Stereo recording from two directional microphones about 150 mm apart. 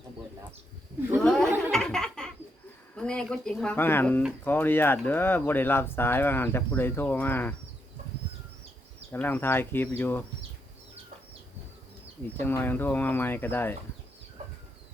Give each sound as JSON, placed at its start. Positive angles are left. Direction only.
{"t": 1.2, "sound": "a sound", "side_deg": 5}
{"t": 1.7, "sound": "laughter", "side_deg": 5}
{"t": 2.9, "sound": "speech", "side_deg": 5}
{"t": 9.1, "sound": "speech", "side_deg": 15}
{"t": 12.4, "sound": "speech", "side_deg": 15}
{"t": 14.4, "sound": "bird flight", "side_deg": -45}